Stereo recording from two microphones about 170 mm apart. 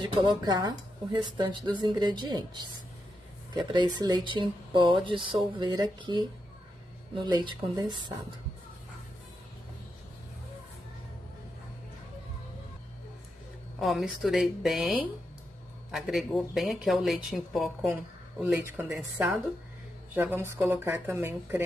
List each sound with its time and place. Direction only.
0.1 s speech: 25° right (ahead or behind)
13.7 s speech: centre (ahead or behind)
18.4 s speech: 15° right (ahead or behind)